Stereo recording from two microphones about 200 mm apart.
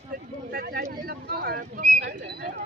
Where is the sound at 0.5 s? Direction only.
50° right (ahead or behind).